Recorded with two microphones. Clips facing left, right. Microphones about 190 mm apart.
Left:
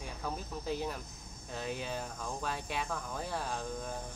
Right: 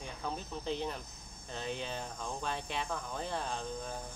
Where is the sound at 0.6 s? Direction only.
5° left (ahead or behind).